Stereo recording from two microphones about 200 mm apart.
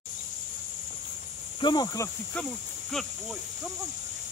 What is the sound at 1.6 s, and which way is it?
Speech, 20° left (ahead or behind).